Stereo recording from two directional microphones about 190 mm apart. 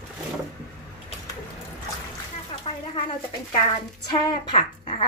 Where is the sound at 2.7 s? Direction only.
35° left (ahead or behind).